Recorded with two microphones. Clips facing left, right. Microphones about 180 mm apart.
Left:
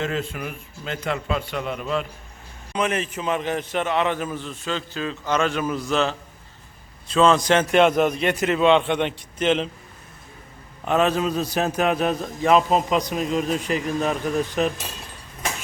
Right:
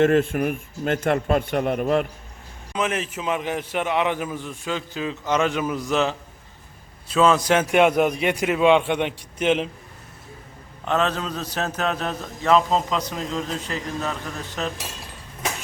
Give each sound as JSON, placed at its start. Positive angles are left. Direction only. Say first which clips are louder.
{"t": 0.0, "sound": "speech", "louder": "right 9 dB", "side_deg": -55}
{"t": 2.7, "sound": "a man's voice", "louder": "left 1 dB", "side_deg": 0}
{"t": 10.8, "sound": "a man's voice", "louder": "left 3 dB", "side_deg": 10}